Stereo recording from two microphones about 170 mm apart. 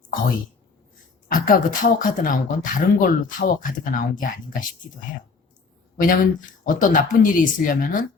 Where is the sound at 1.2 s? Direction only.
55° left (ahead or behind).